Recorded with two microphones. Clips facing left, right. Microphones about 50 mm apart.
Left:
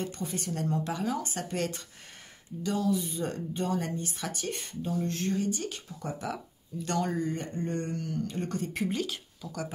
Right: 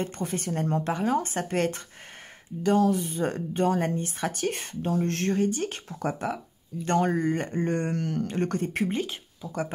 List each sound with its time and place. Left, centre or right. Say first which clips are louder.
0.2 s speech: right 4 dB; right
4.5 s speech: right 5 dB; right
5.9 s speech: right 7 dB; right
6.8 s speech: right 6 dB; right
7.2 s speech: right 6 dB; right
8.8 s speech: right 3 dB; right